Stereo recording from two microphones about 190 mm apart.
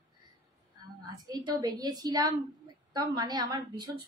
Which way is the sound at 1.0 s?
20° right (ahead or behind).